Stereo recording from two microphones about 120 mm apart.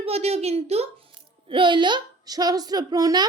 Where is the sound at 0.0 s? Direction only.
60° right (ahead or behind).